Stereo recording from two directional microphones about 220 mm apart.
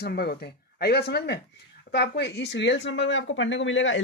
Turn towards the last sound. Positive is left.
turn(degrees=55)  # may be behind; listen again after turning